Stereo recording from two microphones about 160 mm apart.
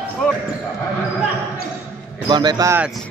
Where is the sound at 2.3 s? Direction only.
25° right (ahead or behind).